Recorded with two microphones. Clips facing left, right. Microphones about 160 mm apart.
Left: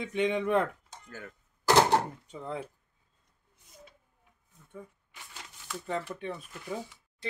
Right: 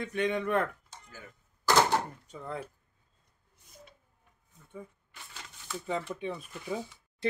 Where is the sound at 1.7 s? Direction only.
30° left (ahead or behind).